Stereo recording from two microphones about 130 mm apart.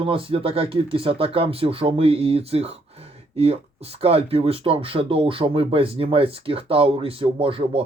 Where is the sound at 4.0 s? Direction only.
50° right (ahead or behind).